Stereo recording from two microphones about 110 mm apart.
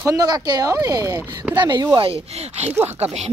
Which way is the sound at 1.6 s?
40° right (ahead or behind).